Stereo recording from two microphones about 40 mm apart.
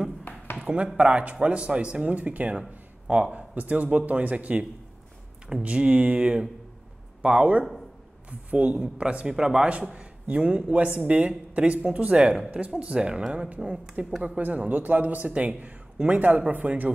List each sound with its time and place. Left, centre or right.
0.9 s speech: right
13.0 s speech: centre
13.3 s speech: right